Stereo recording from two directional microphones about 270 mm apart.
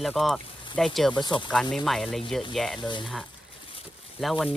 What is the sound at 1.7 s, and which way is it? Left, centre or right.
Speech, centre.